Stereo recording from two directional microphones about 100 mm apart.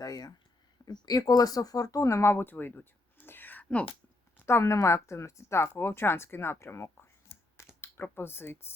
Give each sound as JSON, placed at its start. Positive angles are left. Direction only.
{"t": 0.0, "sound": "speech", "side_deg": 40}
{"t": 4.4, "sound": "speech", "side_deg": 25}